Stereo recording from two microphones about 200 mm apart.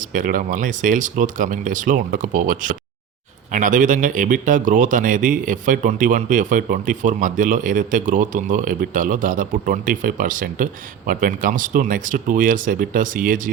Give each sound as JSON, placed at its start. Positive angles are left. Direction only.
{"t": 0.1, "sound": "speech", "side_deg": -40}